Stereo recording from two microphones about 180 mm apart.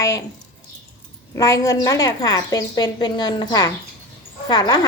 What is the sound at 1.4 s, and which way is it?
A woman's voice, 20° left (ahead or behind).